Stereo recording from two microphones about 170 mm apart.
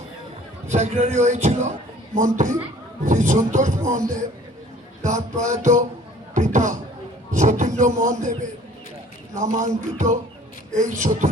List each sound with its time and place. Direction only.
0.7 s a man's voice: 40° right (ahead or behind)
5.0 s a man's voice: 45° right (ahead or behind)
6.3 s a sound: 45° right (ahead or behind)
7.3 s a man's voice: 45° right (ahead or behind)